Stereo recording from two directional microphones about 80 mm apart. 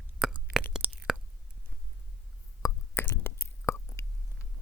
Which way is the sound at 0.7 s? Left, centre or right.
Centre.